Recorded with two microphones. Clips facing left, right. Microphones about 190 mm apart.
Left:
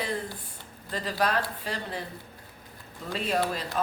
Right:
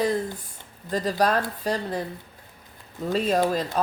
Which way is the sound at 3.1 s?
40° right (ahead or behind).